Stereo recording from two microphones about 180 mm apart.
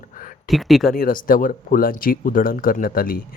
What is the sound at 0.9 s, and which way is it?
Speech, 50° left (ahead or behind).